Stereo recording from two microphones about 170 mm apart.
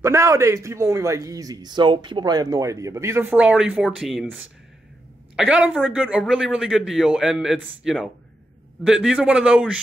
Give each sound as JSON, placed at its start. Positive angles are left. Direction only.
{"t": 0.0, "sound": "a woman's voice", "side_deg": -20}